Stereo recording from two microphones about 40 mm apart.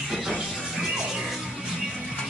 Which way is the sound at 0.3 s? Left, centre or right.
Centre.